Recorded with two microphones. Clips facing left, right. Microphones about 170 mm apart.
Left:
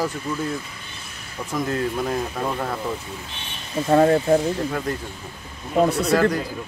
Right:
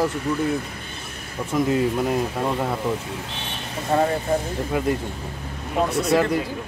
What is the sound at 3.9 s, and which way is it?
Speech, 55° left (ahead or behind).